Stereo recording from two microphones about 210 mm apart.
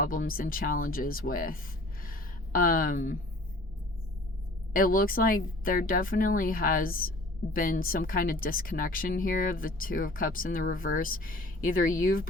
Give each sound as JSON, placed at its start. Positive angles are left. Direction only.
{"t": 0.0, "sound": "speech", "side_deg": 40}
{"t": 4.7, "sound": "speech", "side_deg": 40}